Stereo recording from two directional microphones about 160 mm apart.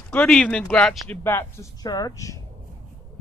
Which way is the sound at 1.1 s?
15° left (ahead or behind).